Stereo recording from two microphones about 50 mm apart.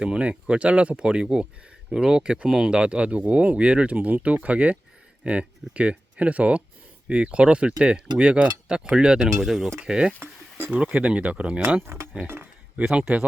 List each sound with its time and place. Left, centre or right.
0.0 s speech: right
9.4 s speech: centre
9.8 s speech: centre
11.8 s speech: right
13.0 s speech: right